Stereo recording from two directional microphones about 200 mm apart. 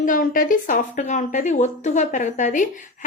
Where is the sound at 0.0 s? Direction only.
40° left (ahead or behind).